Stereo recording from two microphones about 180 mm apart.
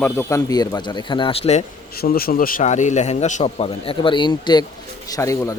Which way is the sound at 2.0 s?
55° left (ahead or behind).